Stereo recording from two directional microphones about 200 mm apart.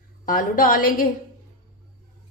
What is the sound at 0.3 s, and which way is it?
Speech, 45° left (ahead or behind).